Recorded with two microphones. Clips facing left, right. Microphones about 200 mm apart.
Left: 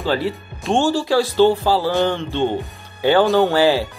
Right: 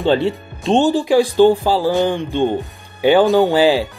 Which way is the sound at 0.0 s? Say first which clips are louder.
Right 5 dB; 25° right (ahead or behind).